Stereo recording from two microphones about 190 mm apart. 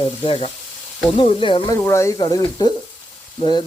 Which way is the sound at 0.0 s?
30° left (ahead or behind).